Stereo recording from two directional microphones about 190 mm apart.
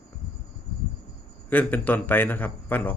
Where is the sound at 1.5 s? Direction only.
10° left (ahead or behind).